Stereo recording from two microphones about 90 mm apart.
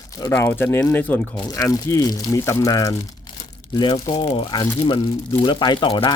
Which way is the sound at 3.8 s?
60° left (ahead or behind).